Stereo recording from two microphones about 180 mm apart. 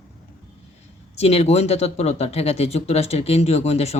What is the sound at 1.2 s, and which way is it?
Speech, 35° left (ahead or behind).